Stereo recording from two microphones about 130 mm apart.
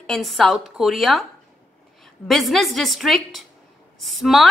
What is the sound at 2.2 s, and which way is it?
A woman's voice, centre (ahead or behind).